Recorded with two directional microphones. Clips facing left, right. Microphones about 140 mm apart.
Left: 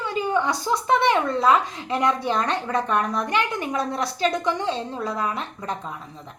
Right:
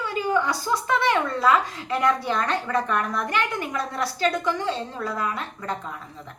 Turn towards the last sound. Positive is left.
turn(degrees=20)  # may be behind; listen again after turning